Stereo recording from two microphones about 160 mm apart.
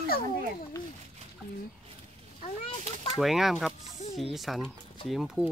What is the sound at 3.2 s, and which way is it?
Speech, centre (ahead or behind).